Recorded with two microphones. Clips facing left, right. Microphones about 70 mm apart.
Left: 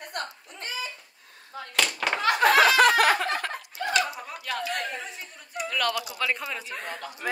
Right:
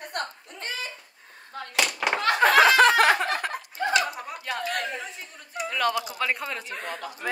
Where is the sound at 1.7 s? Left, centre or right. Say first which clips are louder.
Right 1 dB; centre.